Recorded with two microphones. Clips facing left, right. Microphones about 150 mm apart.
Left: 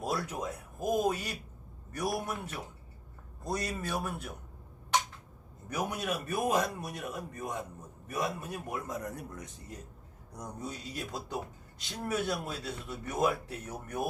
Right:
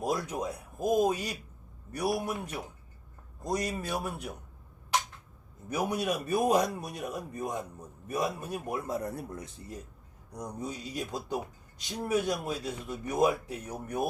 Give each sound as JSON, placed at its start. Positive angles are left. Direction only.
{"t": 0.0, "sound": "speech", "side_deg": -15}
{"t": 5.6, "sound": "speech", "side_deg": -10}
{"t": 8.7, "sound": "speech", "side_deg": -30}
{"t": 10.3, "sound": "speech", "side_deg": -10}